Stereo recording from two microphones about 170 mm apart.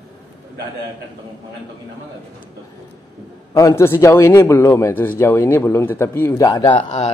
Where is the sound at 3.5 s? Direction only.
15° left (ahead or behind).